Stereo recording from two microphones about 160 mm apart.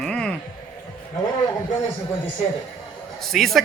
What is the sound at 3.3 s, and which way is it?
Speech, centre (ahead or behind).